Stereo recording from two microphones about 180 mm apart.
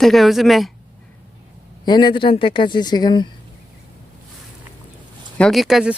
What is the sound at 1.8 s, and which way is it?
A woman's voice, 25° left (ahead or behind).